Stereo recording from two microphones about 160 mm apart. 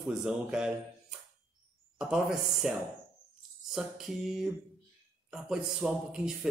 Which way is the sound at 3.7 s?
Centre (ahead or behind).